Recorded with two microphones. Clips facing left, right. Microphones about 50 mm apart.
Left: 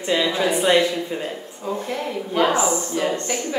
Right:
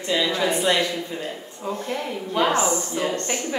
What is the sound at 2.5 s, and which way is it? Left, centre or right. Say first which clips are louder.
Speech: left 1 dB; centre.